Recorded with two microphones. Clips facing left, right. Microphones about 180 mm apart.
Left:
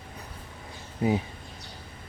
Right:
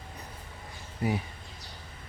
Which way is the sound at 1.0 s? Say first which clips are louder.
Left 5 dB; 20° left (ahead or behind).